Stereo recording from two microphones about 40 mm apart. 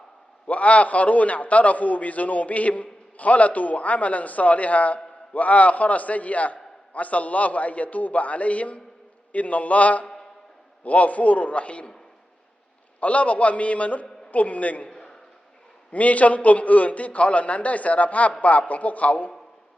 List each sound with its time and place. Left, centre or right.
0.4 s a man's voice: left
13.0 s a man's voice: left
14.8 s a sound: centre
15.9 s a man's voice: left